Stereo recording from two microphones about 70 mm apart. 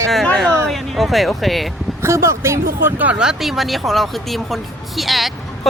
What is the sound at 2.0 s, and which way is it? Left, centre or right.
Speech, right.